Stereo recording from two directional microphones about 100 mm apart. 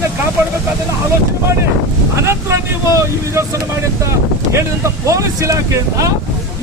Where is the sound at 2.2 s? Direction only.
30° right (ahead or behind).